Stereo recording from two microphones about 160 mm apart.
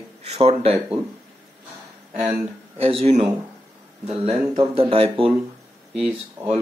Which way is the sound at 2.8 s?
35° right (ahead or behind).